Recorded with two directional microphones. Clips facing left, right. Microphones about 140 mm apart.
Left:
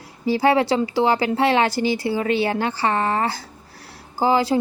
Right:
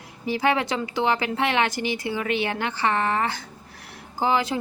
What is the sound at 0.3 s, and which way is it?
Speech, 35° left (ahead or behind).